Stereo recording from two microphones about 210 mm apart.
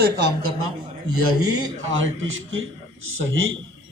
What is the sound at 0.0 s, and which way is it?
Speech, 50° right (ahead or behind).